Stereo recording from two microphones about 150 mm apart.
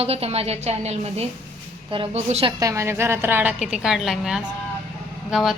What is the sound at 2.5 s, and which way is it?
A woman's voice, 20° right (ahead or behind).